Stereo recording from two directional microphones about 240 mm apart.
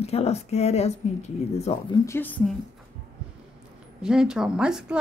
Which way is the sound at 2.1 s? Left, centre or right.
Centre.